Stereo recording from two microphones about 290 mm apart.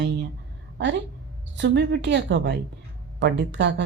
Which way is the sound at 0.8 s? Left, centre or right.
Right.